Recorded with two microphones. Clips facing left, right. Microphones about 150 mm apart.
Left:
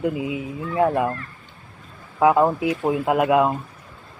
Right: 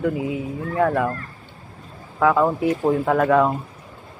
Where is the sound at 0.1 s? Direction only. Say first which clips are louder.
Right 1 dB; 30° right (ahead or behind).